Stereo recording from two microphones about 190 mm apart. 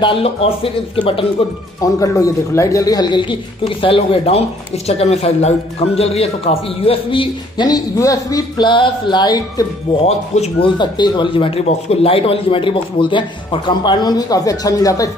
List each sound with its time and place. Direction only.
0.0 s speech: 30° left (ahead or behind)
1.8 s speech: 15° left (ahead or behind)
10.0 s speech: 35° left (ahead or behind); by 15.0 s 20° left (ahead or behind)